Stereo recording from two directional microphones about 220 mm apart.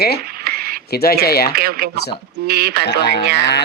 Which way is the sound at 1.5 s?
45° right (ahead or behind).